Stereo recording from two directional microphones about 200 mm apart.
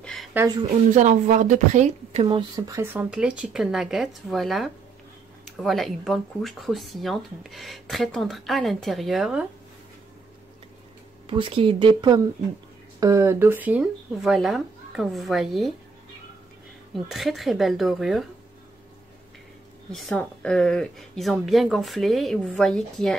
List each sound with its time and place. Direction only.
0.0 s a sound: centre (ahead or behind)
0.9 s speech: 35° right (ahead or behind)
2.2 s speech: 20° right (ahead or behind); by 9.5 s 5° right (ahead or behind)
11.2 s speech: 25° right (ahead or behind); by 15.7 s centre (ahead or behind)
16.9 s speech: centre (ahead or behind)
19.9 s speech: 5° left (ahead or behind)